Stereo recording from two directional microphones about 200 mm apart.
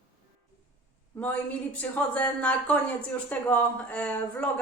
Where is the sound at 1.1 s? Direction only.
5° left (ahead or behind).